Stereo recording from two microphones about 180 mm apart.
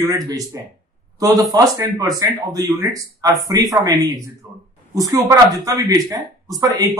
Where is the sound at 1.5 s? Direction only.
20° right (ahead or behind).